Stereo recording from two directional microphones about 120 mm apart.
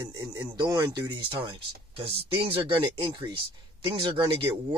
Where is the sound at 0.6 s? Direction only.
35° right (ahead or behind).